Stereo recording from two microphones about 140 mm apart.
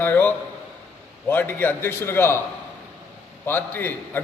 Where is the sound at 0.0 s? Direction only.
15° left (ahead or behind).